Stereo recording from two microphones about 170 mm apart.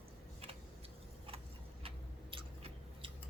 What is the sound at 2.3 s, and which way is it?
Chewing, 30° right (ahead or behind).